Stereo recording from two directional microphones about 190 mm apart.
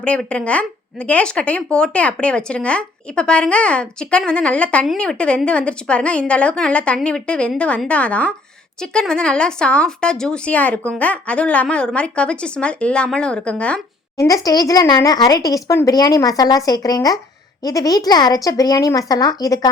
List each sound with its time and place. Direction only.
0.0 s speech: 5° left (ahead or behind)
14.2 s speech: 20° left (ahead or behind)